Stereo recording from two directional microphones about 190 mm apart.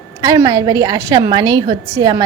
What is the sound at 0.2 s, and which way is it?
A woman's voice, 20° right (ahead or behind).